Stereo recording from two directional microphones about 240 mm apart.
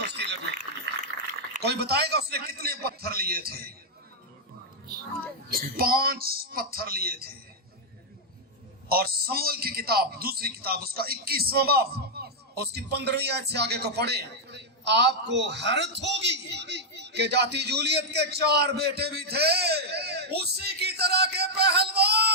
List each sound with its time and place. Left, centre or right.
0.0 s a sound: right
1.6 s a man's voice: right
5.5 s a man's voice: right
8.9 s a man's voice: right